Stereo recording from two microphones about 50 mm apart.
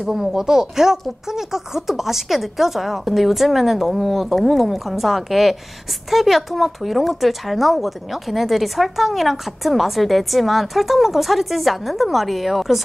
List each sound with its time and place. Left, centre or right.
0.1 s speech: centre